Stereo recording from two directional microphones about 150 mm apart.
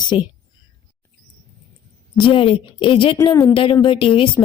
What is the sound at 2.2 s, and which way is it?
A woman's voice, 35° left (ahead or behind).